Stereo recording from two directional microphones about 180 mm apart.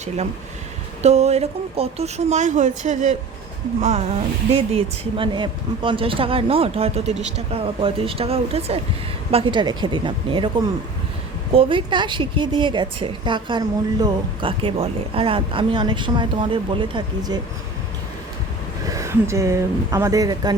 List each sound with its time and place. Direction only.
1.0 s a woman's voice: 35° right (ahead or behind)
11.5 s a woman's voice: 25° right (ahead or behind)
18.9 s a woman's voice: 15° right (ahead or behind)